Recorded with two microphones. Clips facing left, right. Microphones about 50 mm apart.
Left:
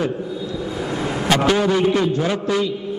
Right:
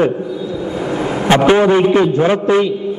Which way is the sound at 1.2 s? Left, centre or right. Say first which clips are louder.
Right 7 dB; right.